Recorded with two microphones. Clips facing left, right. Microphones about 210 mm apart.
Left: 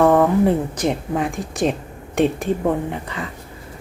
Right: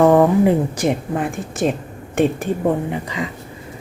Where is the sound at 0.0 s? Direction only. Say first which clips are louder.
Right 2 dB; 15° right (ahead or behind).